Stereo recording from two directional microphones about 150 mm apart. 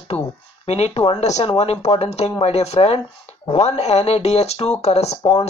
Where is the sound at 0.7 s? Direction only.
45° left (ahead or behind).